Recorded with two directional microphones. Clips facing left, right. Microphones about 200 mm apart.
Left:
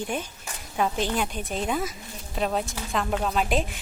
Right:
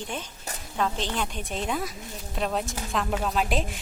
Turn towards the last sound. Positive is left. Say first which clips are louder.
# left 1 dB
turn(degrees=0)  # may be behind; listen again after turning